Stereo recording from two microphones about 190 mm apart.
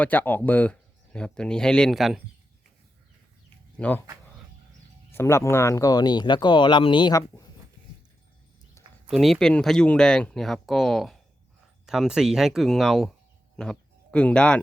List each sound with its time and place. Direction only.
0.0 s speech: 10° left (ahead or behind)
3.8 s speech: 10° left (ahead or behind)
5.1 s speech: 15° left (ahead or behind)
9.0 s speech: centre (ahead or behind)